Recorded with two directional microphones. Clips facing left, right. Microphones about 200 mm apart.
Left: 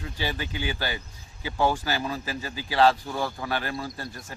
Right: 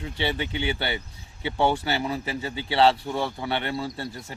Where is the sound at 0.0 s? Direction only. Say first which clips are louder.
Right 4 dB; 25° right (ahead or behind).